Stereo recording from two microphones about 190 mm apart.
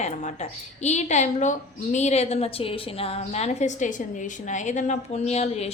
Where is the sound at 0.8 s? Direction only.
35° left (ahead or behind).